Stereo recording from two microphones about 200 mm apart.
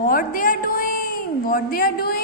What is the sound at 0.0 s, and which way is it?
A woman's voice, 45° left (ahead or behind).